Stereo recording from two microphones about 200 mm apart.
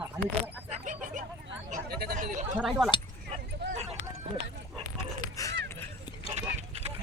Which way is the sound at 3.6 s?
60° right (ahead or behind).